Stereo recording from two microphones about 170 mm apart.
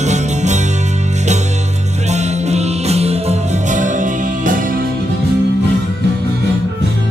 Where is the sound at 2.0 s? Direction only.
40° right (ahead or behind).